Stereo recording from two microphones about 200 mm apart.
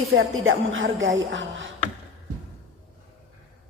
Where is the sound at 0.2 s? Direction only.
85° right; by 1.6 s 70° right (ahead or behind).